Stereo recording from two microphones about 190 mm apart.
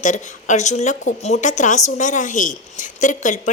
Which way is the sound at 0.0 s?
40° left (ahead or behind).